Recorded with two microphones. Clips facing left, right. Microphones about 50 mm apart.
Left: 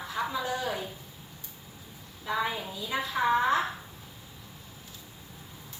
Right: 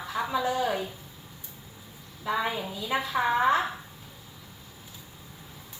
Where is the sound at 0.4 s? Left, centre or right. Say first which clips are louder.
Right 5 dB; right.